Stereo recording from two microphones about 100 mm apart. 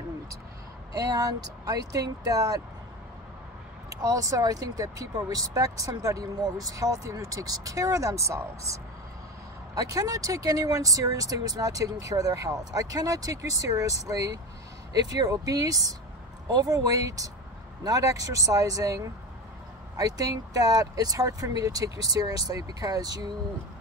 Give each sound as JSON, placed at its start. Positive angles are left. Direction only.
{"t": 0.9, "sound": "speech", "side_deg": -35}
{"t": 4.0, "sound": "speech", "side_deg": -35}
{"t": 9.8, "sound": "speech", "side_deg": -35}